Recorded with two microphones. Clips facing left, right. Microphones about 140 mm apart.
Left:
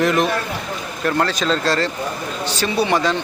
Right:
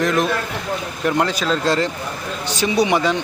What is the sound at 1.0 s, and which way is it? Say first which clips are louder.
A man's voice: even; 15° right (ahead or behind).